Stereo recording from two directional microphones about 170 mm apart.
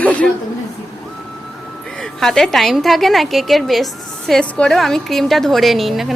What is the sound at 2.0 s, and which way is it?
A woman's voice, 5° left (ahead or behind).